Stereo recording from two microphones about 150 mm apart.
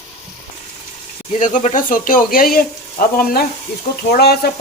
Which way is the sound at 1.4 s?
55° left (ahead or behind).